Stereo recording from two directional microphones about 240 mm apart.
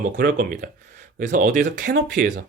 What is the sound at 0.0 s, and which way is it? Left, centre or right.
Speech, right.